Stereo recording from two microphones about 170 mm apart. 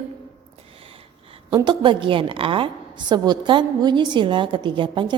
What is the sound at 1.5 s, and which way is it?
A woman's voice, 30° right (ahead or behind).